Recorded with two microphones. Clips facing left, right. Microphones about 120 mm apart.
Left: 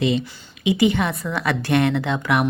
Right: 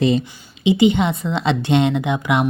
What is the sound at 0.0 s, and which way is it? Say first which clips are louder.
Speech: right 4 dB; 40° right (ahead or behind).